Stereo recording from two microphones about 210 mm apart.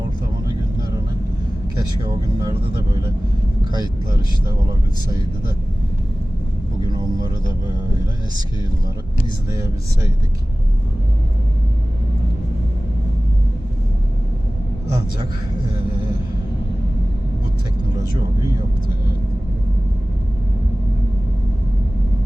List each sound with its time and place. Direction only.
1.8 s speech: 20° right (ahead or behind)
6.8 s music: 20° right (ahead or behind)